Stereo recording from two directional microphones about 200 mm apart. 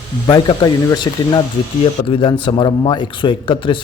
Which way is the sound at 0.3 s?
20° left (ahead or behind).